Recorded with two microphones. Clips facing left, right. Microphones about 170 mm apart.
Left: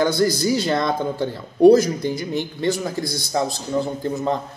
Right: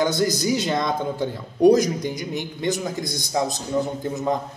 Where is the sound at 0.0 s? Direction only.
20° right (ahead or behind).